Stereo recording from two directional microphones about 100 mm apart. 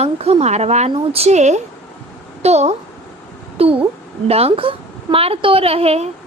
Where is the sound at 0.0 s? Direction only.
90° right.